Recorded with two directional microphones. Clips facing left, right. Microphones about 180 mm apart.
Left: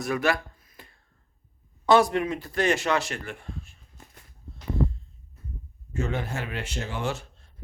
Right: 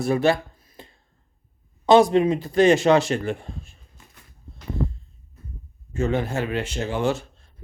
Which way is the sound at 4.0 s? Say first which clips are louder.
Left 3 dB; 45° left (ahead or behind).